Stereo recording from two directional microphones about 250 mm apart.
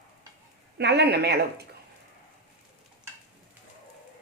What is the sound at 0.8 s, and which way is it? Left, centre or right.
Speech, right.